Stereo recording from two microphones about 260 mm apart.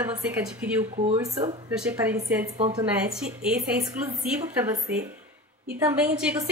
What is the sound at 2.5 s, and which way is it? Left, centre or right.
Speech, right.